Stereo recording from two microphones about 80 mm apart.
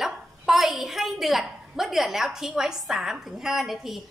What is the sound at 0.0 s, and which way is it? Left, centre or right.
A woman's voice, centre.